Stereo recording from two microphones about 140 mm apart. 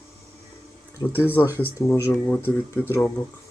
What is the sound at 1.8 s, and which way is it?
Speech, 15° left (ahead or behind).